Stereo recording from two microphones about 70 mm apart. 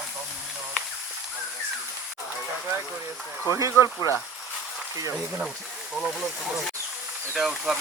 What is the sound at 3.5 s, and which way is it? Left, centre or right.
Speech, right.